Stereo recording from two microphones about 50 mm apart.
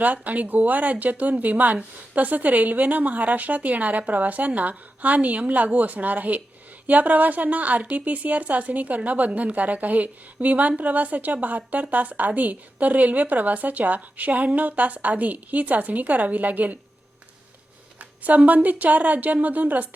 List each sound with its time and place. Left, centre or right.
0.0 s a woman's voice: right
18.2 s a woman's voice: right